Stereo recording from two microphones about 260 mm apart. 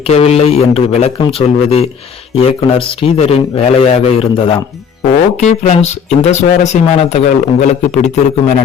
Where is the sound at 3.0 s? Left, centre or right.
Left.